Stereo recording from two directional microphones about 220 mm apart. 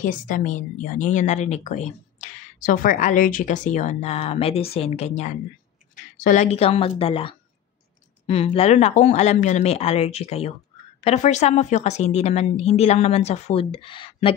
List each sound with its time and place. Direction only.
0.0 s a woman's voice: 35° left (ahead or behind)